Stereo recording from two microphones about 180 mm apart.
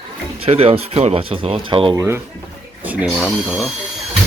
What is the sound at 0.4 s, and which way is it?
Speech, 35° right (ahead or behind).